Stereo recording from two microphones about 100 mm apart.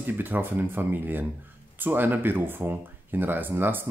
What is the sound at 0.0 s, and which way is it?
Speech, 20° right (ahead or behind).